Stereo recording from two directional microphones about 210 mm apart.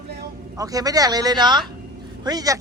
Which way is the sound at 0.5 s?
15° right (ahead or behind).